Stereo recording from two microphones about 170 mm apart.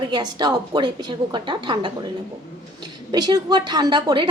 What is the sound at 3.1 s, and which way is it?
A woman's voice, 25° right (ahead or behind).